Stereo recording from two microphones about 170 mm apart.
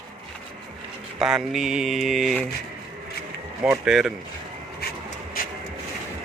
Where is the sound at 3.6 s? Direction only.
5° right (ahead or behind).